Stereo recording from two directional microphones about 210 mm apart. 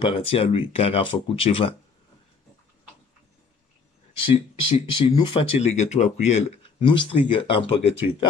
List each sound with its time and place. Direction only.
0.0 s speech: 25° left (ahead or behind)
4.2 s speech: 25° left (ahead or behind)